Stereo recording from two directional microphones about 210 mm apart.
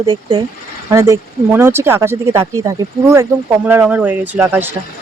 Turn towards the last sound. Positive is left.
turn(degrees=-10)  # may be behind; listen again after turning